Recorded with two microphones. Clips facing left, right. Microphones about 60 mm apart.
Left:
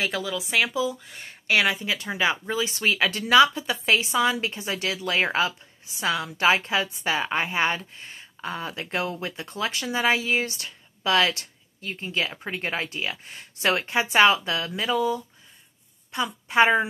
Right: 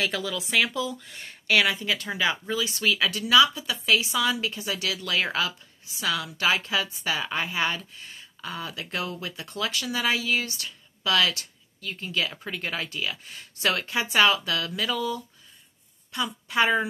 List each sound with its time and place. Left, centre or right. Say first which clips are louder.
0.0 s a woman's voice: left 1 dB; centre; by 16.8 s left